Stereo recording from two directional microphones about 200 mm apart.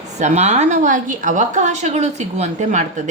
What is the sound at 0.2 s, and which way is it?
A woman's voice, 35° right (ahead or behind).